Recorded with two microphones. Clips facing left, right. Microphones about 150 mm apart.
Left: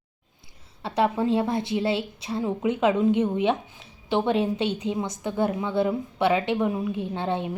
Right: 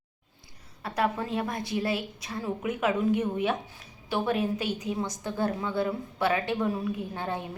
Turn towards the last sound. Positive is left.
turn(degrees=20)  # may be behind; listen again after turning